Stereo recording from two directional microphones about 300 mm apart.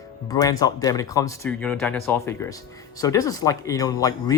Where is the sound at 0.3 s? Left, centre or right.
Centre.